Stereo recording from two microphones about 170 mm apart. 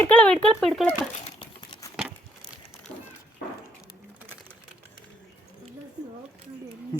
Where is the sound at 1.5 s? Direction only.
25° left (ahead or behind).